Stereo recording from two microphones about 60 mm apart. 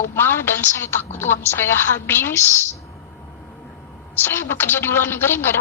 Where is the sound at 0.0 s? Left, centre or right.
Left.